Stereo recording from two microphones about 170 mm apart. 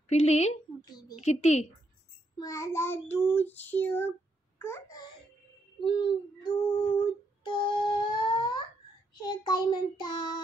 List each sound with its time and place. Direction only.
0.1 s a woman's voice: 40° left (ahead or behind)
0.8 s a sound: 25° left (ahead or behind)
1.2 s a woman's voice: 40° left (ahead or behind)
2.3 s child singing: 20° left (ahead or behind)
4.6 s a child's voice: 15° left (ahead or behind)
5.9 s child singing: 30° left (ahead or behind)